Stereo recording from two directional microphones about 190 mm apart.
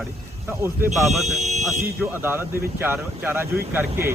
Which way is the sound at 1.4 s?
40° right (ahead or behind).